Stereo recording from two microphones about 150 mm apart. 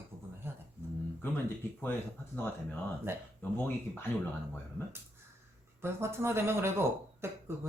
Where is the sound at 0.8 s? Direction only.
15° right (ahead or behind).